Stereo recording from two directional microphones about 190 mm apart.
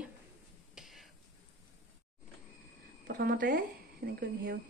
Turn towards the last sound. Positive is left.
turn(degrees=-55)  # may be behind; listen again after turning